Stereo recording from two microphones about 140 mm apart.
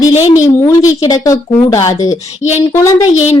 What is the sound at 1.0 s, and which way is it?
A woman's voice, 25° left (ahead or behind).